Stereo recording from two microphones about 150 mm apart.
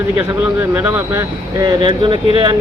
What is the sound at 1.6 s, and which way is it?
Speech, 30° right (ahead or behind).